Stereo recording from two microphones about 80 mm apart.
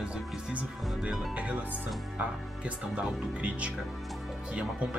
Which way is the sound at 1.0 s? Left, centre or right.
Centre.